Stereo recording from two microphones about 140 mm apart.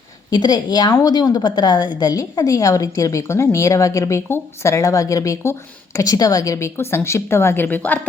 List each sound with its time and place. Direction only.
0.3 s a woman's voice: 30° left (ahead or behind); by 7.9 s 10° left (ahead or behind)